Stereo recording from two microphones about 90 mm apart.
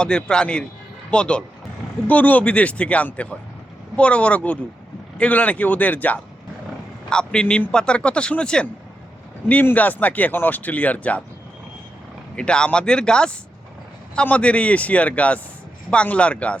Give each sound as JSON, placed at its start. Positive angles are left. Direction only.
{"t": 0.0, "sound": "speech", "side_deg": 10}
{"t": 12.4, "sound": "speech", "side_deg": 10}